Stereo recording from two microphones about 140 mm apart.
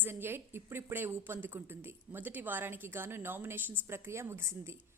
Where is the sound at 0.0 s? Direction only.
15° right (ahead or behind).